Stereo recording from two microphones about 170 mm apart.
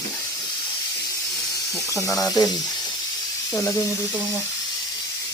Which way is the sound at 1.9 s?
20° left (ahead or behind).